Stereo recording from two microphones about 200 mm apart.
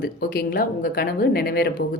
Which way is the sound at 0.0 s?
50° left (ahead or behind).